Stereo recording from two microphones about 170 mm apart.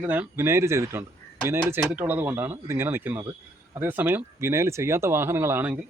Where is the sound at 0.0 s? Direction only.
10° right (ahead or behind).